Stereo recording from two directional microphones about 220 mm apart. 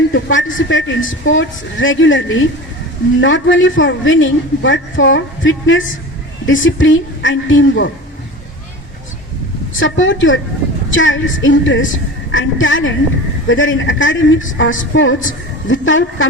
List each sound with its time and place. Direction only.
0.1 s a man's voice: 60° left (ahead or behind)
9.7 s a man's voice: 60° left (ahead or behind)